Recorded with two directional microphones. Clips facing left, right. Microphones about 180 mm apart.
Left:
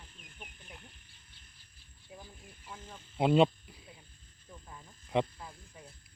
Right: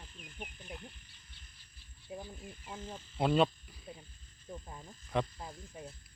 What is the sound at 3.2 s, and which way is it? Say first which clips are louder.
Speech: left 4 dB; 20° left (ahead or behind).